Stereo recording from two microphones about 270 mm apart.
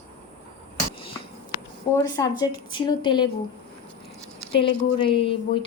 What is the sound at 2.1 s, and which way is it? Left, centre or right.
A woman's voice, centre.